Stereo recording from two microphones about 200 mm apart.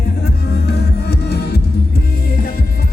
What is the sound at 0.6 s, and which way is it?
Music, 55° left (ahead or behind).